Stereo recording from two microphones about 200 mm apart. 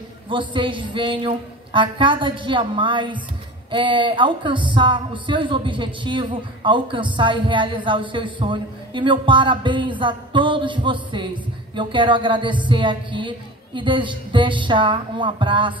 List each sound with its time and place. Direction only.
0.3 s speech: 25° right (ahead or behind)